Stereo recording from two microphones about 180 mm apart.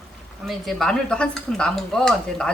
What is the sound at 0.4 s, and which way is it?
A woman's voice, centre (ahead or behind).